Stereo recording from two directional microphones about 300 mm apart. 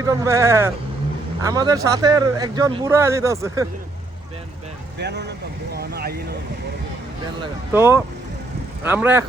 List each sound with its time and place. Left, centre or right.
0.0 s speech: centre
4.9 s speech: right
7.7 s speech: centre